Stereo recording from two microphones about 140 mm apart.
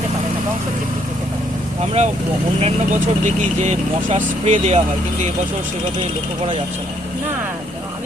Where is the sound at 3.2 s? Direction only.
60° right (ahead or behind).